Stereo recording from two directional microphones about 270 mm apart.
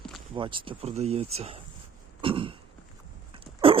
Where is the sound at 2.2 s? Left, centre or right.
Centre.